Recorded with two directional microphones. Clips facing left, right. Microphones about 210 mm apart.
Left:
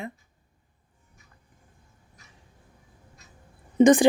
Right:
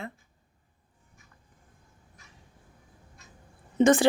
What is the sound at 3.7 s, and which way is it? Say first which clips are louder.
Speech: left 4 dB; 15° left (ahead or behind).